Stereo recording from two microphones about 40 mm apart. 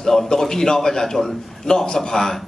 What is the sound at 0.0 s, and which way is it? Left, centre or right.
A man's voice, centre.